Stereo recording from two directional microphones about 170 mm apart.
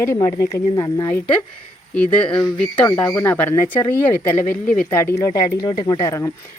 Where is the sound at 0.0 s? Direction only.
15° left (ahead or behind).